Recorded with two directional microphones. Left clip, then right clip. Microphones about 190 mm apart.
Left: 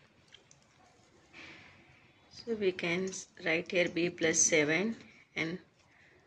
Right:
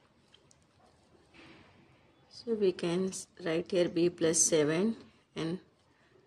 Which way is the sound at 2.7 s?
65° right (ahead or behind).